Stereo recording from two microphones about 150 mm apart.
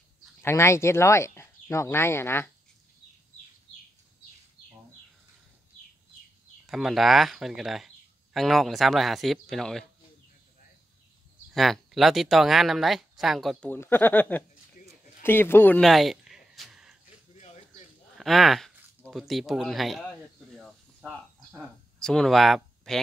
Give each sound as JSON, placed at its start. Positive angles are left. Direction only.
{"t": 0.4, "sound": "speech", "side_deg": 15}
{"t": 6.6, "sound": "speech", "side_deg": 0}
{"t": 11.5, "sound": "speech", "side_deg": 0}
{"t": 13.7, "sound": "speech", "side_deg": 15}
{"t": 15.8, "sound": "a sound", "side_deg": 0}
{"t": 18.1, "sound": "speech", "side_deg": 0}
{"t": 20.5, "sound": "a sound", "side_deg": 0}